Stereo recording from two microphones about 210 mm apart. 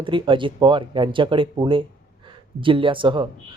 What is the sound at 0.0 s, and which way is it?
Speech, 25° right (ahead or behind).